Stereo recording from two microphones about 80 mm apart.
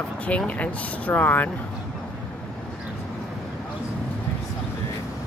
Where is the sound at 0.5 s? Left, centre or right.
Centre.